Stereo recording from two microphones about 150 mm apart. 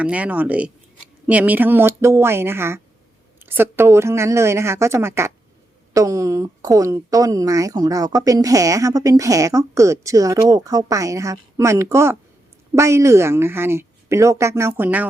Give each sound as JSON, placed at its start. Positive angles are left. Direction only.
{"t": 0.0, "sound": "a woman's voice", "side_deg": -10}